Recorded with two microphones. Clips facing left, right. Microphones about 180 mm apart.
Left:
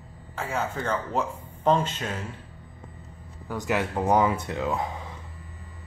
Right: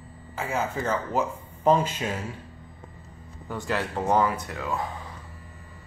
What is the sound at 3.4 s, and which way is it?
Speech, 15° left (ahead or behind).